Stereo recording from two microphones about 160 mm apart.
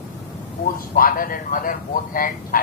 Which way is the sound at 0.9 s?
60° left (ahead or behind).